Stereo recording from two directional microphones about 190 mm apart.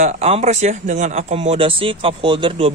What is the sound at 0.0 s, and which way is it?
Speech, 35° right (ahead or behind).